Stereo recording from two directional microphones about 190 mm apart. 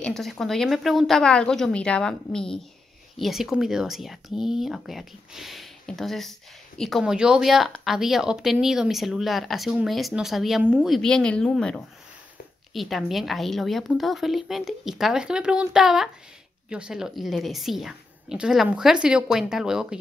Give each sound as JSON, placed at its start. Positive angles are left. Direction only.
{"t": 0.0, "sound": "speech", "side_deg": 0}